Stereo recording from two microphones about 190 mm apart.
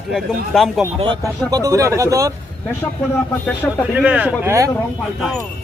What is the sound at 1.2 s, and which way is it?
A man's voice, 20° right (ahead or behind).